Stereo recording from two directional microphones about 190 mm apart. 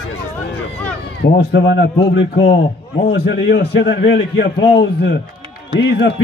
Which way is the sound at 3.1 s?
65° left (ahead or behind).